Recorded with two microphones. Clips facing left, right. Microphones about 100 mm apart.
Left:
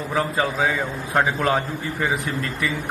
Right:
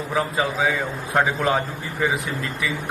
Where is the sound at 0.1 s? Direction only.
5° right (ahead or behind).